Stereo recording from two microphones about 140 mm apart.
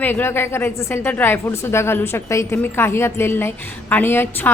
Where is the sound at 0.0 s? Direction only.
15° left (ahead or behind).